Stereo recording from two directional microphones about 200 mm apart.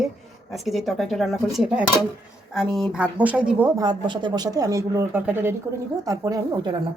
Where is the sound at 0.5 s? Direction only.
Centre (ahead or behind).